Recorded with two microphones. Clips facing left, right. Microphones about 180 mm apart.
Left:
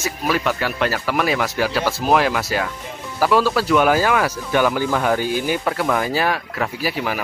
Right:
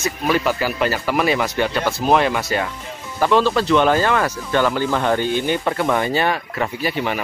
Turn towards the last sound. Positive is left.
turn(degrees=0)  # may be behind; listen again after turning